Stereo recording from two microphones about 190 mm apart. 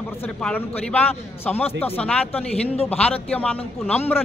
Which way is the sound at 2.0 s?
5° left (ahead or behind).